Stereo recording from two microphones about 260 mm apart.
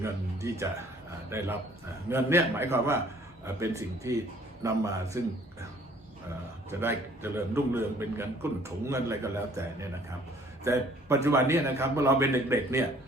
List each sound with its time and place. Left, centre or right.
0.0 s a man's voice: centre
6.7 s a man's voice: centre